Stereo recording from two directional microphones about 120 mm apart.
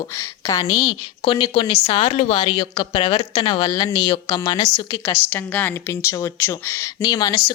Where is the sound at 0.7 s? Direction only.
40° left (ahead or behind).